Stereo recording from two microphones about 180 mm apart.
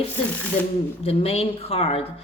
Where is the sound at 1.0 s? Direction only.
35° left (ahead or behind).